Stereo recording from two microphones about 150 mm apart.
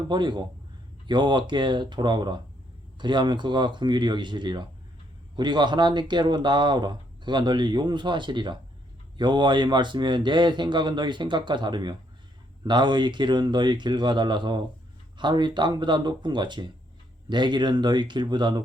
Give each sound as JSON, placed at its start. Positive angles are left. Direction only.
{"t": 0.1, "sound": "speech", "side_deg": -30}